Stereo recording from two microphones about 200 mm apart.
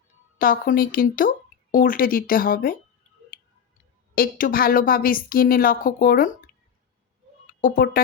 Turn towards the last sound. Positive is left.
turn(degrees=45)  # may be behind; listen again after turning